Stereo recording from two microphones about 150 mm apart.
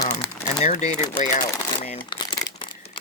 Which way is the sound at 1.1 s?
60° left (ahead or behind).